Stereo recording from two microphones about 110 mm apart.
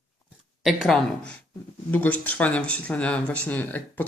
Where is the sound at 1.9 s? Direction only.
15° left (ahead or behind).